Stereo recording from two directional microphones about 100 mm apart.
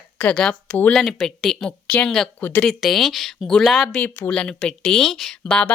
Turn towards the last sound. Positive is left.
turn(degrees=10)  # may be behind; listen again after turning